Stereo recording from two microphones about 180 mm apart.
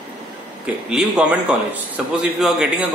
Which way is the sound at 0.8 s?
5° right (ahead or behind).